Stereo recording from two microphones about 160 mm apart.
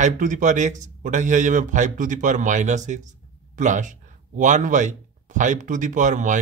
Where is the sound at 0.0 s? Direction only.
50° right (ahead or behind).